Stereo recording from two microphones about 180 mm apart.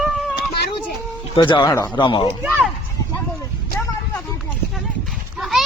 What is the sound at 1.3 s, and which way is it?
Speech, 25° left (ahead or behind).